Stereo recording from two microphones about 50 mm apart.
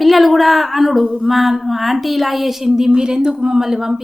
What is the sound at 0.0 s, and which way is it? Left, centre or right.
Speech, centre.